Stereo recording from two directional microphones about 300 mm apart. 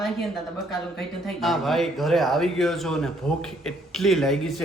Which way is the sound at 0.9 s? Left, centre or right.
Centre.